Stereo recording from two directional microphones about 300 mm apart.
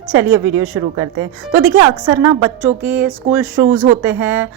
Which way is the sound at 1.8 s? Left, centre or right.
Centre.